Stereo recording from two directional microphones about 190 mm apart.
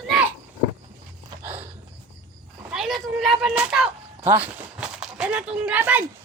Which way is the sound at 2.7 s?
Centre (ahead or behind).